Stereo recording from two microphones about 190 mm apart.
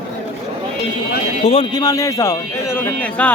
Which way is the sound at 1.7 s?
20° left (ahead or behind).